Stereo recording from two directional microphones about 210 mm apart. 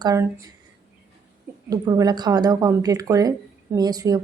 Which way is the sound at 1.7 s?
20° right (ahead or behind).